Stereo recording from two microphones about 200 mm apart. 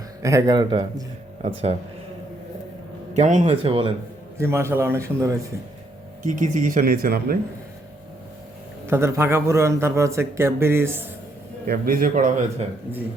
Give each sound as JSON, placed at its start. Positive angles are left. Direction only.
{"t": 0.2, "sound": "a man's voice", "side_deg": -15}
{"t": 1.4, "sound": "speech", "side_deg": -30}
{"t": 3.2, "sound": "speech", "side_deg": -35}
{"t": 4.4, "sound": "a man's voice", "side_deg": -15}
{"t": 6.2, "sound": "speech", "side_deg": -40}
{"t": 8.9, "sound": "a man's voice", "side_deg": -15}
{"t": 11.6, "sound": "a man's voice", "side_deg": -45}